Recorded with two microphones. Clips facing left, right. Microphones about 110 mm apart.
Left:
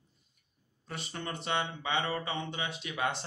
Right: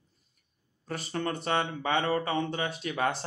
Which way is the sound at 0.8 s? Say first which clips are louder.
Right 7 dB; 40° right (ahead or behind).